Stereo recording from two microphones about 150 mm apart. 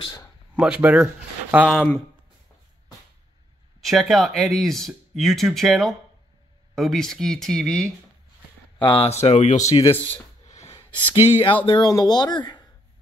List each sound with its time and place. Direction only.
0.0 s speech: 25° left (ahead or behind)
0.6 s speech: 5° right (ahead or behind)
1.7 s speech: 5° left (ahead or behind)
3.8 s speech: centre (ahead or behind)
8.7 s speech: 35° left (ahead or behind)
9.2 s speech: 50° left (ahead or behind)
9.9 s speech: 10° left (ahead or behind)
10.4 s a sound: 50° left (ahead or behind)
10.9 s speech: 10° left (ahead or behind)
11.6 s speech: 30° left (ahead or behind)